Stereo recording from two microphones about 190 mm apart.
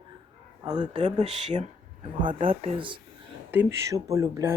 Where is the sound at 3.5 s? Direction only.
15° right (ahead or behind).